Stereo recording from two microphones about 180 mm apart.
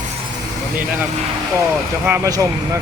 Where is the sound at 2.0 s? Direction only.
15° right (ahead or behind).